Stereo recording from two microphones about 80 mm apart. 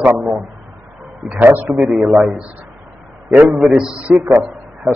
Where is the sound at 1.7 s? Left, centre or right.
Centre.